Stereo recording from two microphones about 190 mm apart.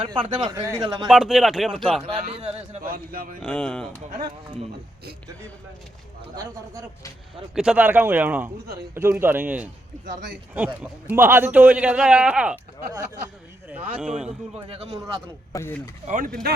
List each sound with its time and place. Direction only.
0.0 s a man's voice: 25° right (ahead or behind)
1.0 s speech: 5° right (ahead or behind)
2.0 s speech: 30° right (ahead or behind)
2.8 s speech: 50° right (ahead or behind)
3.4 s speech: 5° left (ahead or behind)
3.9 s a man's voice: 20° right (ahead or behind)
6.3 s a man's voice: 20° right (ahead or behind)
7.5 s a man's voice: 5° right (ahead or behind)
11.1 s a man's voice: 10° right (ahead or behind)
14.3 s speech: 35° right (ahead or behind)
15.5 s speech: 15° left (ahead or behind)
16.0 s speech: 45° right (ahead or behind)